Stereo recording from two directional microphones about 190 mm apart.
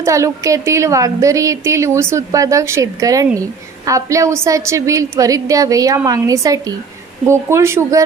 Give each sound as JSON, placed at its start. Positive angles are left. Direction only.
{"t": 0.0, "sound": "a woman's voice", "side_deg": -15}